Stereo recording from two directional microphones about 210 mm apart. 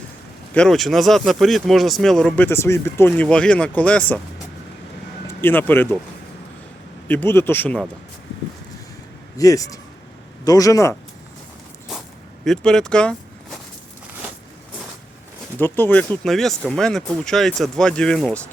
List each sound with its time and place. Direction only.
0.5 s speech: centre (ahead or behind)
5.4 s speech: 10° left (ahead or behind)
7.1 s speech: 10° left (ahead or behind)
9.4 s speech: 15° left (ahead or behind)
12.5 s speech: 5° left (ahead or behind)
15.5 s speech: 10° left (ahead or behind)